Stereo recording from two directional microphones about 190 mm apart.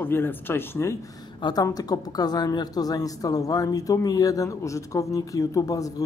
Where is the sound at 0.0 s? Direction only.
10° left (ahead or behind).